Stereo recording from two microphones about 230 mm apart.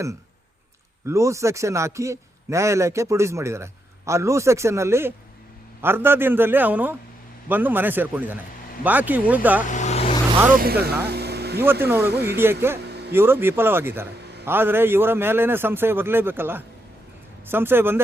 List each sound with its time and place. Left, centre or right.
1.0 s a man's voice: centre
9.6 s vehicle: left
10.5 s speech: right
11.1 s a sound: right
11.6 s a man's voice: centre